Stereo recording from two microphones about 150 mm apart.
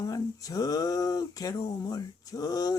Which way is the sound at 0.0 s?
25° left (ahead or behind).